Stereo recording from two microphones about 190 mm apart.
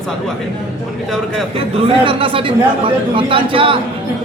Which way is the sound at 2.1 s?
25° right (ahead or behind).